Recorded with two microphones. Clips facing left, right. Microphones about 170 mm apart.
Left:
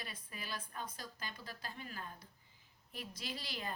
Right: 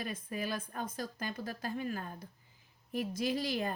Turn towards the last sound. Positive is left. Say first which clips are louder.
# right 12 dB
turn(degrees=-45)  # may be behind; listen again after turning